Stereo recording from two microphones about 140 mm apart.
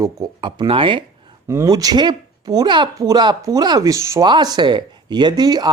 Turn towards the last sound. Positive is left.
turn(degrees=-30)  # may be behind; listen again after turning